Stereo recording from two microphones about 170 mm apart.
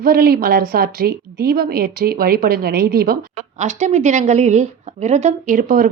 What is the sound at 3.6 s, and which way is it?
A woman's voice, 45° right (ahead or behind).